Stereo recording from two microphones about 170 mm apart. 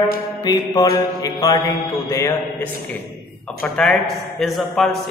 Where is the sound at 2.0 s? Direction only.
15° left (ahead or behind).